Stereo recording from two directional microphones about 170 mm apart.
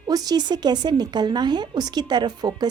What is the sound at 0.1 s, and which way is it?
Speech, 25° right (ahead or behind).